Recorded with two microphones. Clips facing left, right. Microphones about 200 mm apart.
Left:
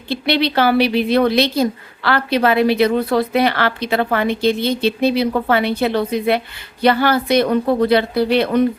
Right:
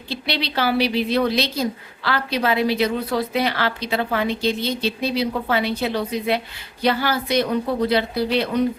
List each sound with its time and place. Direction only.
0.1 s a woman's voice: 60° left (ahead or behind)